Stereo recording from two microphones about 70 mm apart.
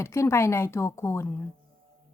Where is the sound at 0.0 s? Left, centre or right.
Left.